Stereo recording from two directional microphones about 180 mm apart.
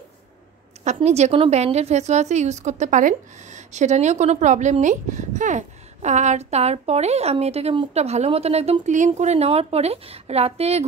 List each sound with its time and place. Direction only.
0.8 s a woman's voice: 35° right (ahead or behind)